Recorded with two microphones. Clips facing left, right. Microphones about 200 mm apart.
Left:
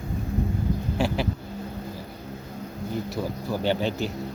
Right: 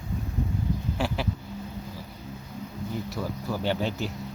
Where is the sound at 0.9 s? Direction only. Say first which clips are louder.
Left 5 dB; 25° left (ahead or behind).